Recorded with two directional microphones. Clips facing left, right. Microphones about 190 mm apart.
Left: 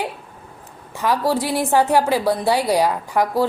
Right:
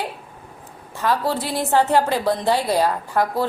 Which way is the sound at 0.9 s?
15° left (ahead or behind).